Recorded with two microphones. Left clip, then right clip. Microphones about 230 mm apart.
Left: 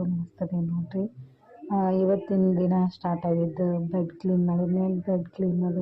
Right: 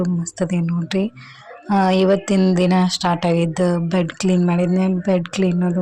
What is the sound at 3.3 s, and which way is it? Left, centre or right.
A woman's voice, right.